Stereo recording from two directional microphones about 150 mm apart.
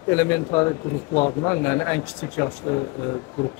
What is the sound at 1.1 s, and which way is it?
Speech, 35° left (ahead or behind).